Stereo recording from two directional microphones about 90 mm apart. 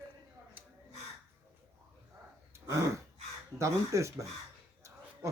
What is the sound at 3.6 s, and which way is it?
Speech, 35° right (ahead or behind).